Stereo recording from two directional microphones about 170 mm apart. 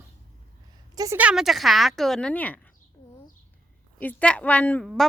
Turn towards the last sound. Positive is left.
turn(degrees=10)  # may be behind; listen again after turning